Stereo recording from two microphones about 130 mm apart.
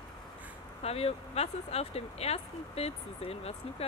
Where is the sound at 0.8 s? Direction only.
50° left (ahead or behind).